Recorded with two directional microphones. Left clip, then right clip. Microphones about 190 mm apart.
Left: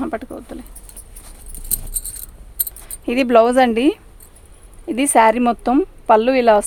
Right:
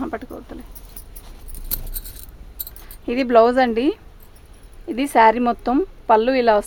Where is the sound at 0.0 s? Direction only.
40° left (ahead or behind).